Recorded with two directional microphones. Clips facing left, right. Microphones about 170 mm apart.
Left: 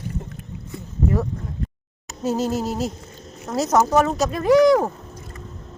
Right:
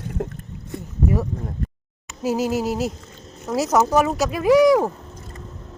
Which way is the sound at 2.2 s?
5° right (ahead or behind).